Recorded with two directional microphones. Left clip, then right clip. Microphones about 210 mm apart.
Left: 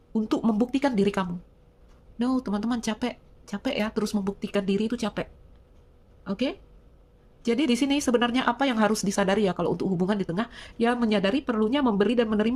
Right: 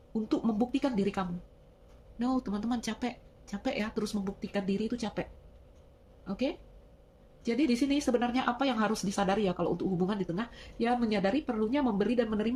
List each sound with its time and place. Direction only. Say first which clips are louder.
0.1 s speech: left 5 dB; 45° left (ahead or behind)